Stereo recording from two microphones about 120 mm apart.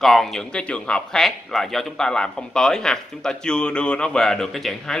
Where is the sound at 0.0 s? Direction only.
Centre (ahead or behind).